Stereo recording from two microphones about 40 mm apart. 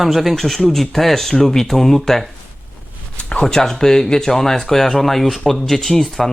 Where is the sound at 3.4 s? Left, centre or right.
Centre.